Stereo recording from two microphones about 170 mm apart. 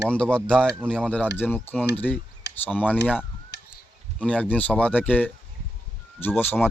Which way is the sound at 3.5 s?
90° left.